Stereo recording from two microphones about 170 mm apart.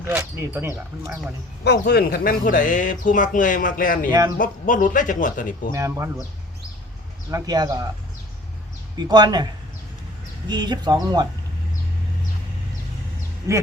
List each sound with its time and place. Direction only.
0.1 s speech: 15° right (ahead or behind)
1.6 s speech: 70° left (ahead or behind); by 5.7 s 50° left (ahead or behind)
5.7 s speech: 15° right (ahead or behind)
7.3 s speech: 20° right (ahead or behind)
9.0 s speech: 25° right (ahead or behind)
10.5 s speech: 25° right (ahead or behind)
13.5 s speech: 15° right (ahead or behind)